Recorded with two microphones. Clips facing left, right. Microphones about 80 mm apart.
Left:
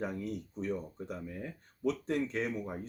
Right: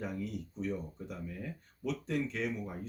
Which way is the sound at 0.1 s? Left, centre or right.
Left.